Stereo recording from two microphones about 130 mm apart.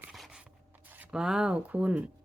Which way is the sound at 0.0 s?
5° right (ahead or behind).